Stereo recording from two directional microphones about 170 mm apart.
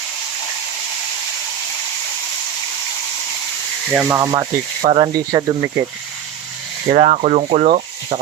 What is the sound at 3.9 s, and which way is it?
Speech, 10° right (ahead or behind).